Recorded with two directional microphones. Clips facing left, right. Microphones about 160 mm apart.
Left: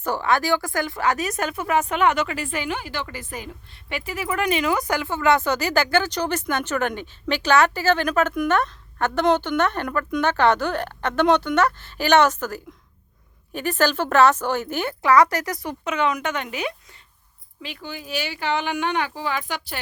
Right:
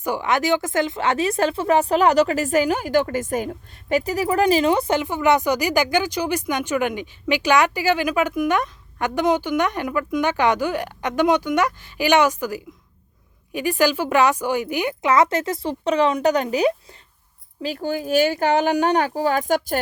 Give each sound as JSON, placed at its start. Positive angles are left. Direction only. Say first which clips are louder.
{"t": 0.0, "sound": "a woman's voice", "louder": "right 1 dB", "side_deg": -15}